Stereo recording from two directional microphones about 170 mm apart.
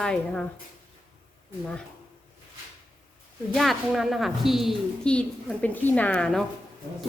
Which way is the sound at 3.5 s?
Centre (ahead or behind).